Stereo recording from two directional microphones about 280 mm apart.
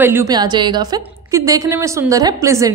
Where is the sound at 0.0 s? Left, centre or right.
Centre.